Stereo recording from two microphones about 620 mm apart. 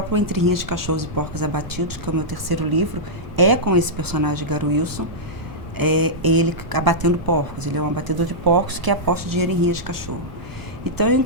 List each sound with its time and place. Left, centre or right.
0.1 s speech: right